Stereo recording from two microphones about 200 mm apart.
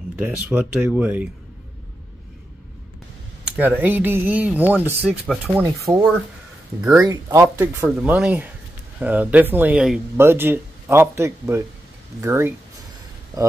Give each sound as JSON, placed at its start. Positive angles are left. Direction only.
{"t": 0.2, "sound": "speech", "side_deg": -10}
{"t": 3.4, "sound": "speech", "side_deg": -5}
{"t": 5.9, "sound": "speech", "side_deg": -25}
{"t": 6.8, "sound": "speech", "side_deg": -15}